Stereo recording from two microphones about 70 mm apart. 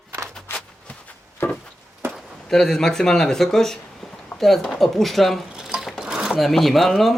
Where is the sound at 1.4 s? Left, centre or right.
Left.